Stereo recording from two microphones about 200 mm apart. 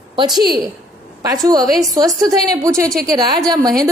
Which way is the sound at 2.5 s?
15° right (ahead or behind).